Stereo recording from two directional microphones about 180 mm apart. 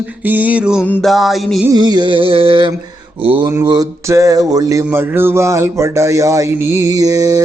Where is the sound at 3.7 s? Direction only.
20° right (ahead or behind).